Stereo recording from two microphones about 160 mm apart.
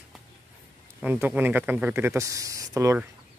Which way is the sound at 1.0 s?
10° right (ahead or behind).